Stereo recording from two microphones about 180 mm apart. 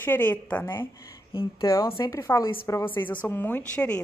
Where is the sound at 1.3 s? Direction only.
30° left (ahead or behind).